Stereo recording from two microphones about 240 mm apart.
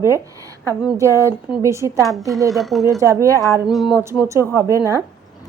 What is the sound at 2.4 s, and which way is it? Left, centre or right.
Speech, centre.